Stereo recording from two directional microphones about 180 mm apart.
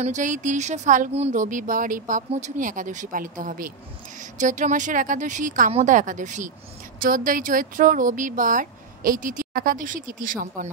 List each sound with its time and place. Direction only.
0.0 s speech: 45° right (ahead or behind)